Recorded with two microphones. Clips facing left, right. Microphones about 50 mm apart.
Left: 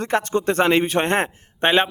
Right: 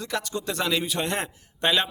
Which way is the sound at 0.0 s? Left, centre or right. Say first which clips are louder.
Left 9 dB; left.